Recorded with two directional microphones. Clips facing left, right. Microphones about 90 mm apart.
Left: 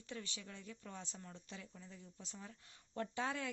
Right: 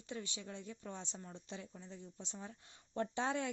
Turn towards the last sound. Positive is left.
turn(degrees=-25)  # may be behind; listen again after turning